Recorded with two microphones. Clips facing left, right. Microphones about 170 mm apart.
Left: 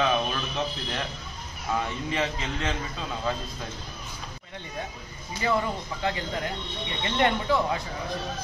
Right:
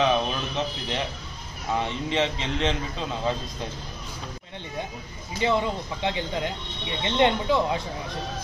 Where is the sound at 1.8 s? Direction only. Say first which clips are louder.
Right 3 dB; 25° right (ahead or behind).